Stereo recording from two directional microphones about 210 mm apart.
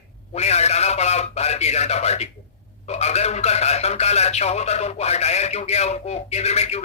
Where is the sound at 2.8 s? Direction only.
30° left (ahead or behind).